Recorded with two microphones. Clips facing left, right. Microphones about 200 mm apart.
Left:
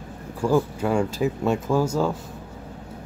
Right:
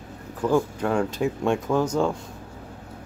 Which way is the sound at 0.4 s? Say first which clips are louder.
Left 1 dB; 10° left (ahead or behind).